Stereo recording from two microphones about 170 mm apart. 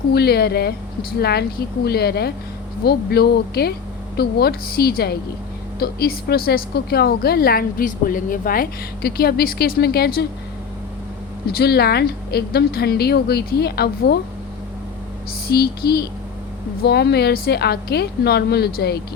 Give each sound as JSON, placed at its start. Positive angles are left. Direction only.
{"t": 0.1, "sound": "a woman's voice", "side_deg": 70}
{"t": 11.5, "sound": "speech", "side_deg": 70}
{"t": 15.4, "sound": "speech", "side_deg": 65}